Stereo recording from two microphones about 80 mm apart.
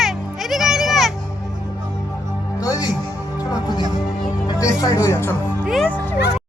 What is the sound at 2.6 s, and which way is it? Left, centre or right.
Music, left.